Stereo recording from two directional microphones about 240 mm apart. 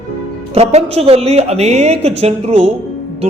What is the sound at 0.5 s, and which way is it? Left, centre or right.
A woman's voice, right.